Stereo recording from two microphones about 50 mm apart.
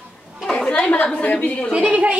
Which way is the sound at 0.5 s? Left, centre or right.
Centre.